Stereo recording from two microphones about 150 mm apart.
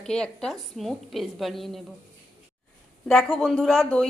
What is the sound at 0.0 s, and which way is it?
A woman's voice, 5° left (ahead or behind).